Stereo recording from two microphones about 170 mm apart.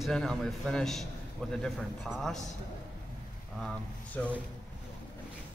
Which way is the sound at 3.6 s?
5° left (ahead or behind).